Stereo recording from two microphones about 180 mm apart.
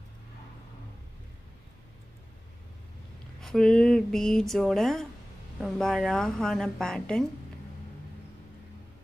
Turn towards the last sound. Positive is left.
turn(degrees=5)  # may be behind; listen again after turning